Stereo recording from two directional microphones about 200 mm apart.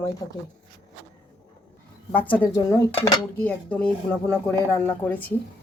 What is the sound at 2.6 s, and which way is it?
Speech, 20° left (ahead or behind).